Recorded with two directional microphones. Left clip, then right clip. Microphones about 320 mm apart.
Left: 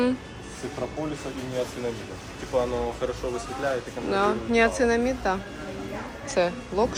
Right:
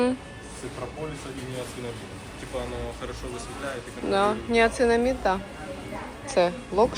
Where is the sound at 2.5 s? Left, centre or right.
Left.